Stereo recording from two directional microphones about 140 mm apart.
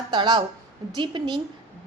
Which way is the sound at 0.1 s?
35° right (ahead or behind).